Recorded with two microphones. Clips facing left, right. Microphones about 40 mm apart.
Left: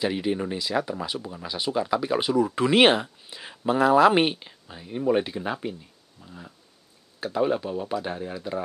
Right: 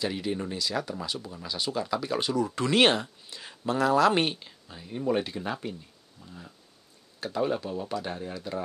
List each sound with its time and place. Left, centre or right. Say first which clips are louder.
0.0 s speech: left 5 dB; centre